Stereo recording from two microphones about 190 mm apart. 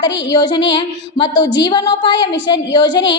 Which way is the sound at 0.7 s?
25° left (ahead or behind).